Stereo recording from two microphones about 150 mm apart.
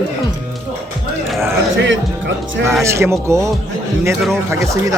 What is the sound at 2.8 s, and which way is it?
Speech, 20° right (ahead or behind).